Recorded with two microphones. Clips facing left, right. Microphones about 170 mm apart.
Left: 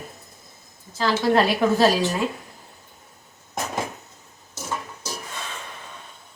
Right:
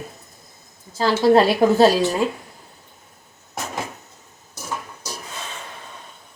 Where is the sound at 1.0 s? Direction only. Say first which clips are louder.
Right 5 dB; 35° right (ahead or behind).